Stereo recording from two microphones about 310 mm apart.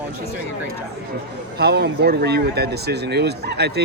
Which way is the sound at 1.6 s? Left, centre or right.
Right.